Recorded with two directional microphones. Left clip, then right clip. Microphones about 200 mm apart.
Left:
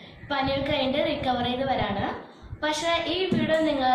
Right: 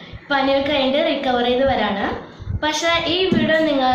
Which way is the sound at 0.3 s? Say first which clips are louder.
Right 8 dB; centre (ahead or behind).